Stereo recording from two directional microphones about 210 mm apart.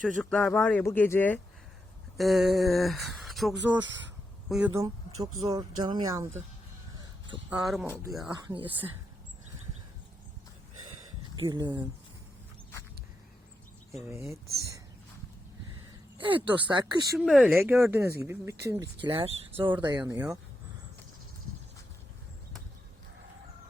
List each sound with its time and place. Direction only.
0.0 s speech: 5° left (ahead or behind)
2.1 s speech: centre (ahead or behind)
5.4 s speech: 20° right (ahead or behind)
7.5 s speech: centre (ahead or behind)
8.3 s speech: 20° right (ahead or behind)
11.3 s speech: 20° right (ahead or behind)
14.0 s speech: 15° right (ahead or behind)
15.9 s a sound: 25° right (ahead or behind)
17.2 s speech: centre (ahead or behind)
19.1 s speech: 25° right (ahead or behind)
20.0 s speech: 10° right (ahead or behind)